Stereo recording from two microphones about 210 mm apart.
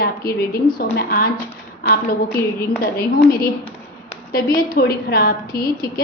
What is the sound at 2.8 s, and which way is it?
A woman's voice, 45° left (ahead or behind).